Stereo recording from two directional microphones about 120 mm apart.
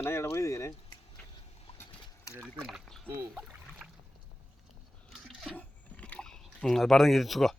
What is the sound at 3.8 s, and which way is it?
Boat, 5° right (ahead or behind).